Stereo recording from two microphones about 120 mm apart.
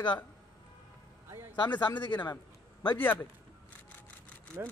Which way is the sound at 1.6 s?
40° left (ahead or behind).